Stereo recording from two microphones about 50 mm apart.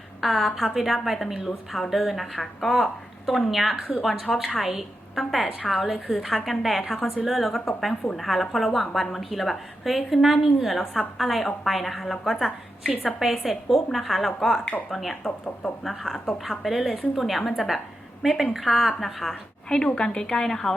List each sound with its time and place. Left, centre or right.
0.2 s a woman's voice: centre
14.6 s speech: left
14.8 s a woman's voice: centre
19.6 s a woman's voice: centre